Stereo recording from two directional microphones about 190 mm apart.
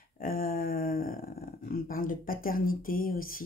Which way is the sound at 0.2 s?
50° left (ahead or behind).